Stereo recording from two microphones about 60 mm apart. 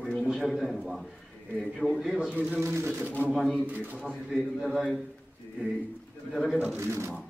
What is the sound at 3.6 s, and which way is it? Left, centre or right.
Speech, right.